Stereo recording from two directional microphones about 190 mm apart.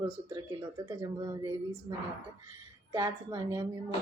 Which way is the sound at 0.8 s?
15° right (ahead or behind).